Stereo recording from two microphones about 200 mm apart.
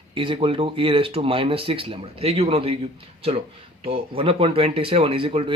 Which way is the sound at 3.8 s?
30° right (ahead or behind).